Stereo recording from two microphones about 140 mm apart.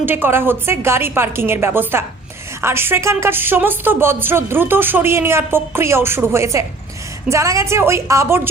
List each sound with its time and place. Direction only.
0.0 s a woman's voice: 15° right (ahead or behind)